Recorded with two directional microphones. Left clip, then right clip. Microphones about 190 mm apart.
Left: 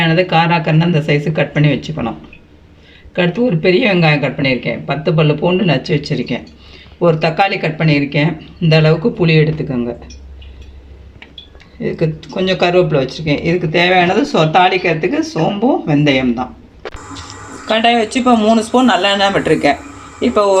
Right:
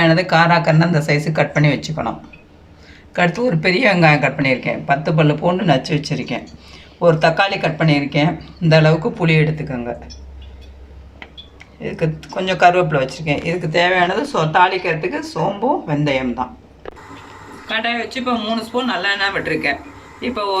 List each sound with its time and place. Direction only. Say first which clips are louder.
0.0 s speech: left 1 dB; 15° left (ahead or behind)
11.8 s speech: left 4 dB; 20° left (ahead or behind)
17.7 s speech: left 8 dB; 40° left (ahead or behind)